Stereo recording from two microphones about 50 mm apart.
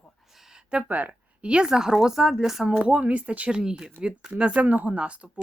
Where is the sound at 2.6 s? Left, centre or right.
Centre.